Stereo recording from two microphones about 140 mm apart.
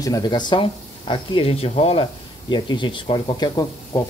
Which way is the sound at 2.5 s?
35° left (ahead or behind).